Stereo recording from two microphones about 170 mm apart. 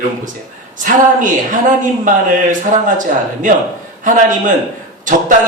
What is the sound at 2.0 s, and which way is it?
Speech, 50° right (ahead or behind).